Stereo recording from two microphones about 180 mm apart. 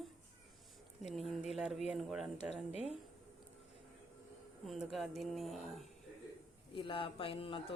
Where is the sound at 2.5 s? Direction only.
35° left (ahead or behind).